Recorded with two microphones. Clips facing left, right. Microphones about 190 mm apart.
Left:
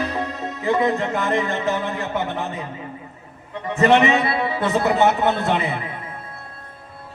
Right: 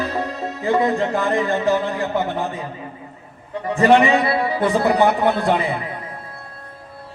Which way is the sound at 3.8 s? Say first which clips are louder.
Right 2 dB; 20° left (ahead or behind).